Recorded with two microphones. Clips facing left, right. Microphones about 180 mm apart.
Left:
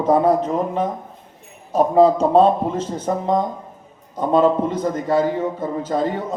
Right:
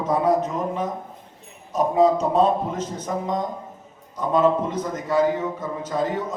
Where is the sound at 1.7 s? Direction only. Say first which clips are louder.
Left 4 dB; 30° left (ahead or behind).